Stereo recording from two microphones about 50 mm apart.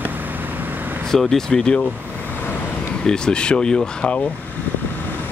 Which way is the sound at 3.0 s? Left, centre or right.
Centre.